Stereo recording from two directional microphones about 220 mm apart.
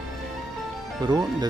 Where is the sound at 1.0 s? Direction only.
20° right (ahead or behind).